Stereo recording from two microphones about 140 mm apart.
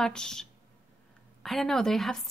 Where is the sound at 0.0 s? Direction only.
5° left (ahead or behind).